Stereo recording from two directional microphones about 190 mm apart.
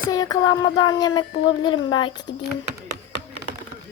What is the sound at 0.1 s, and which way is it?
A child's voice, 20° left (ahead or behind).